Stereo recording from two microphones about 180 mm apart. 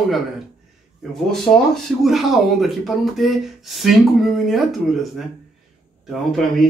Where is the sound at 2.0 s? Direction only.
Centre (ahead or behind).